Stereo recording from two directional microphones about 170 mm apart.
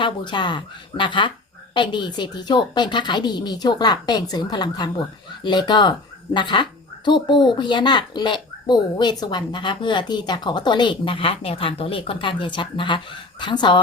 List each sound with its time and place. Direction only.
0.0 s speech: 25° left (ahead or behind)